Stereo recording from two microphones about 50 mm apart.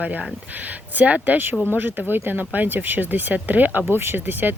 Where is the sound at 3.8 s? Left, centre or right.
Right.